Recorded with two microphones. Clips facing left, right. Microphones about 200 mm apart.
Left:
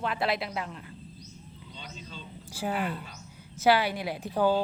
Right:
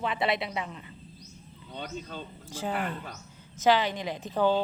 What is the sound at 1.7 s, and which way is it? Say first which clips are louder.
Speech: right 8 dB; 55° right (ahead or behind).